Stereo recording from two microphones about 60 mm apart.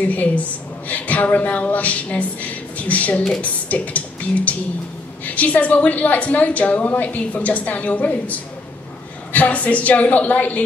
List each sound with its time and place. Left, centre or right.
0.1 s a woman's voice: left
5.2 s a woman's voice: left